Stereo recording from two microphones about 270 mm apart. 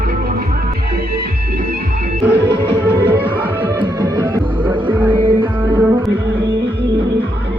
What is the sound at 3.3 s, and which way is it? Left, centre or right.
Music, centre.